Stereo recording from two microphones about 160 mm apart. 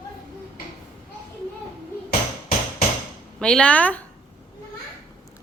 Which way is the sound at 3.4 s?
5° left (ahead or behind).